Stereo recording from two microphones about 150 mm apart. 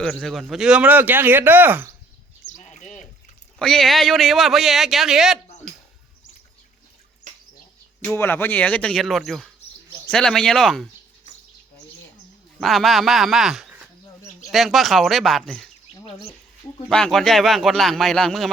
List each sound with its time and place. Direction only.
0.0 s speech: 5° left (ahead or behind); by 1.9 s 10° right (ahead or behind)
2.5 s bird: 50° left (ahead or behind)
3.6 s a man's voice: 5° left (ahead or behind)
8.0 s a man's voice: 15° left (ahead or behind)
12.5 s a man's voice: centre (ahead or behind)
16.0 s speech: 40° left (ahead or behind)
16.9 s a man's voice: 5° left (ahead or behind)